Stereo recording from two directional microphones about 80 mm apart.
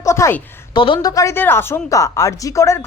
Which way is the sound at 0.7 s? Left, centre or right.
Left.